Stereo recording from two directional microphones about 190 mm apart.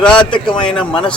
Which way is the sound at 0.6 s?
5° left (ahead or behind).